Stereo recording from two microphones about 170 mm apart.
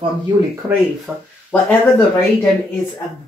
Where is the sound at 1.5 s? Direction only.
10° left (ahead or behind).